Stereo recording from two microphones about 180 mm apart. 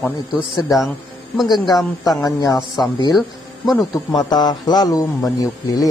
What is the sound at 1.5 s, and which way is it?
Speech, 20° left (ahead or behind).